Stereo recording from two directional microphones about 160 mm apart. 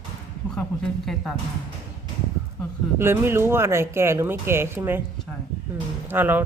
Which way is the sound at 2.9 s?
15° right (ahead or behind).